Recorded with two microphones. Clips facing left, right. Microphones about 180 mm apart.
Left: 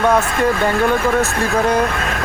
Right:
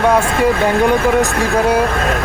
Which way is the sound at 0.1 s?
10° right (ahead or behind).